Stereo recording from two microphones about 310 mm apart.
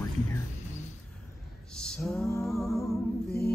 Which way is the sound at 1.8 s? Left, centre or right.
Centre.